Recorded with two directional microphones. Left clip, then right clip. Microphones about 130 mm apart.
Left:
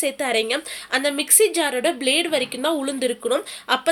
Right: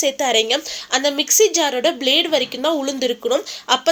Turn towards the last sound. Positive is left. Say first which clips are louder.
# right 3 dB
turn(degrees=-30)  # may be behind; listen again after turning